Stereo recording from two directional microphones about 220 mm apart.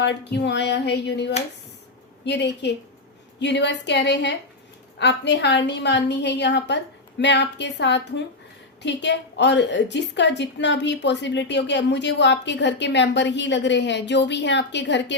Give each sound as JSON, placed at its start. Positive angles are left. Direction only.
{"t": 0.0, "sound": "a woman's voice", "side_deg": 50}